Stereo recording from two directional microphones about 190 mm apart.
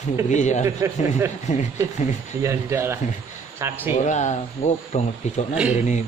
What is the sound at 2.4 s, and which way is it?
Speech, 15° right (ahead or behind).